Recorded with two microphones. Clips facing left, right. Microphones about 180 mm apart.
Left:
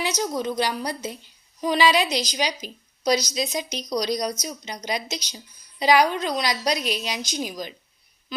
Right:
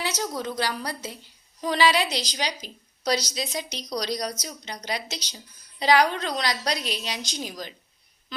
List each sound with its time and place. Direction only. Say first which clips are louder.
0.0 s a woman's voice: left 4 dB; 15° left (ahead or behind)